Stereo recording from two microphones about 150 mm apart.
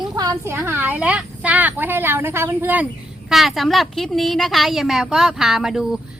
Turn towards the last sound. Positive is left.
turn(degrees=-5)  # may be behind; listen again after turning